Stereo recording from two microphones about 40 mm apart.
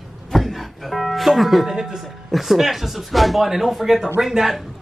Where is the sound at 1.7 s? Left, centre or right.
Centre.